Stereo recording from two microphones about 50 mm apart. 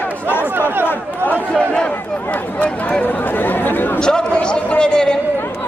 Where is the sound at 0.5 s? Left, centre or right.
Right.